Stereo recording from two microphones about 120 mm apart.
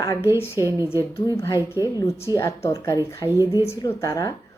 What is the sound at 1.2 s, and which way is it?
A woman's voice, 25° left (ahead or behind).